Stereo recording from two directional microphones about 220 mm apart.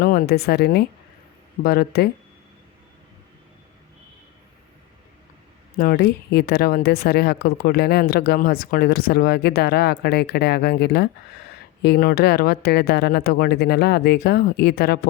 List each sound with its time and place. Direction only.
0.0 s speech: 40° left (ahead or behind)
5.7 s speech: 45° left (ahead or behind)